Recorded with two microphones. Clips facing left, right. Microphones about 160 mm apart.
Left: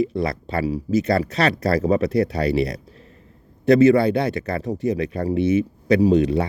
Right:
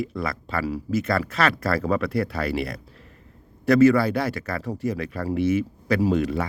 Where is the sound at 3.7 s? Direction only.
25° left (ahead or behind).